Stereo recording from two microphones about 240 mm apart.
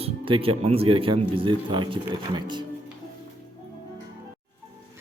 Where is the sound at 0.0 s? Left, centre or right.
Right.